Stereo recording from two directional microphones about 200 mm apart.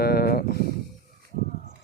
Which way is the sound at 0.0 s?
50° left (ahead or behind).